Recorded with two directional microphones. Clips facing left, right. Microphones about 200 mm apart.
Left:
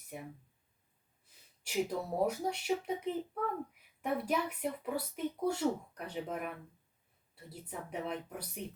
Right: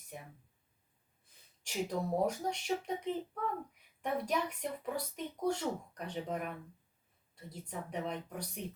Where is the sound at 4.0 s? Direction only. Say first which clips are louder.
Left 1 dB; 5° left (ahead or behind).